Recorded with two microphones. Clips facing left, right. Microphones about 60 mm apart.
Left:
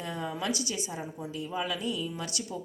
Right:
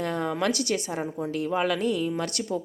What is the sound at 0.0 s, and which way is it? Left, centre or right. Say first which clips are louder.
A woman's voice: right 7 dB; right.